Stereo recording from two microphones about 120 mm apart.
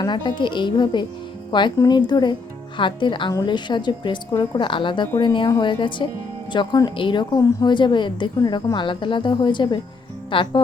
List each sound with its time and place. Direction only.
0.0 s a woman's voice: 40° left (ahead or behind)